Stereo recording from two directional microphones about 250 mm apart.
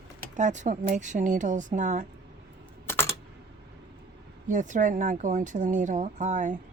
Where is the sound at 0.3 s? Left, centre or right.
Right.